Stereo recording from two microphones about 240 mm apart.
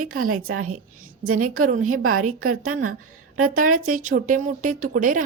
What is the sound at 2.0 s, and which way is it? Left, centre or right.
A woman's voice, right.